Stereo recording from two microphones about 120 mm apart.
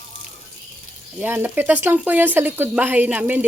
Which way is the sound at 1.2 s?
15° right (ahead or behind).